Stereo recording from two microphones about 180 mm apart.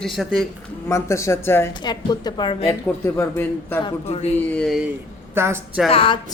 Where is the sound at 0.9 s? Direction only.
15° left (ahead or behind).